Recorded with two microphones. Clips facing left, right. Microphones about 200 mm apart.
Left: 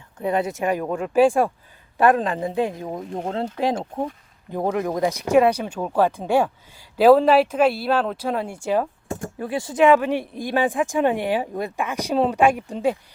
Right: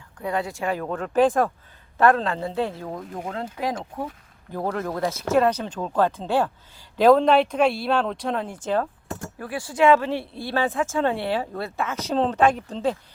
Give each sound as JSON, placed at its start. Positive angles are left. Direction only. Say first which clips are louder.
{"t": 0.2, "sound": "speech", "louder": "left 4 dB", "side_deg": 20}
{"t": 9.4, "sound": "speech", "louder": "left 2 dB", "side_deg": 25}